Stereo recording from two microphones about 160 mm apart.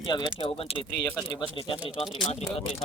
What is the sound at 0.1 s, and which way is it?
Speech, 30° left (ahead or behind).